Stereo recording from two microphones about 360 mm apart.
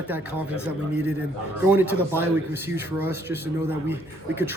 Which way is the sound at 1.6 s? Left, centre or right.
Centre.